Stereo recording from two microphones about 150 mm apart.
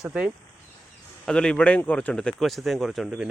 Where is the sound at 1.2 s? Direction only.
5° left (ahead or behind).